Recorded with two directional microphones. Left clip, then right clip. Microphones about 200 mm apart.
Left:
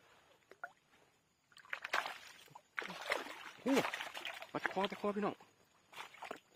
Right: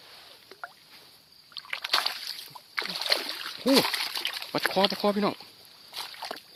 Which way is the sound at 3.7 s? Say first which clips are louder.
Right 12 dB; 10° right (ahead or behind).